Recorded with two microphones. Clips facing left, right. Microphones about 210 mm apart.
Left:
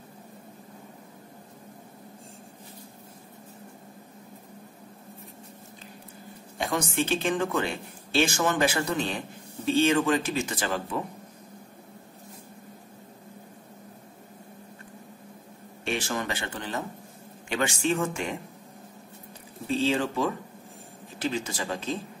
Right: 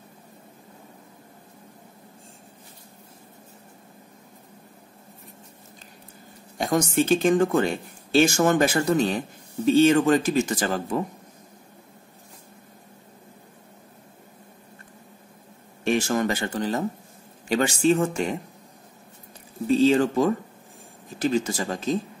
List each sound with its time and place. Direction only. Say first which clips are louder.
6.6 s speech: right 6 dB; 40° right (ahead or behind)
15.8 s speech: right 8 dB; 45° right (ahead or behind)
19.8 s speech: right 7 dB; 45° right (ahead or behind)